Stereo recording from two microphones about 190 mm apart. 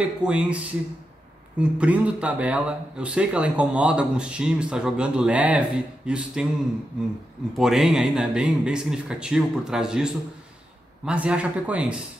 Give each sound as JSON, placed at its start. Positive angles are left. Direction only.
{"t": 0.0, "sound": "speech", "side_deg": -5}
{"t": 7.5, "sound": "speech", "side_deg": 0}